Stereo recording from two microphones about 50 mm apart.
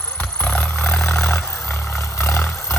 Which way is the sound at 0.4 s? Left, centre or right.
Left.